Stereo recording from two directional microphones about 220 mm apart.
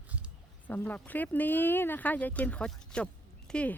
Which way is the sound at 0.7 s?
5° left (ahead or behind).